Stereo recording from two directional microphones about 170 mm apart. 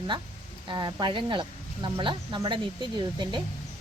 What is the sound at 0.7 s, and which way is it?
Speech, 25° right (ahead or behind).